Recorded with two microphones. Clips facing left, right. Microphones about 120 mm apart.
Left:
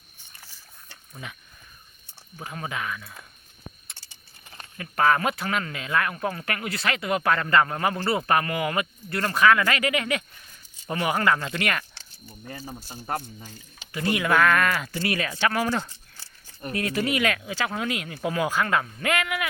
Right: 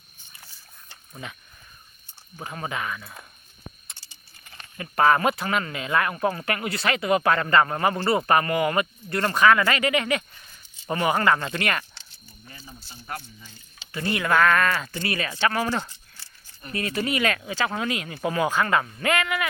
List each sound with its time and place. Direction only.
2.4 s speech: centre (ahead or behind)
4.8 s speech: 5° right (ahead or behind)
12.5 s speech: 45° left (ahead or behind)
13.9 s speech: 10° left (ahead or behind)
16.7 s speech: 5° left (ahead or behind)